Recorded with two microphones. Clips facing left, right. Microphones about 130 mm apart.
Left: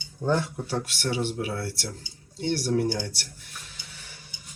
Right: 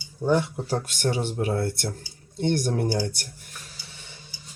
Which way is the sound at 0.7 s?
45° right (ahead or behind).